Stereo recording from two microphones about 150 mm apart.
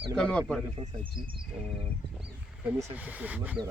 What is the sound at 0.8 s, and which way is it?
Speech, 35° right (ahead or behind).